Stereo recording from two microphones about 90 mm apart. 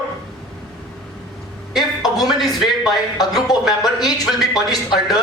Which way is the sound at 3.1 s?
45° left (ahead or behind).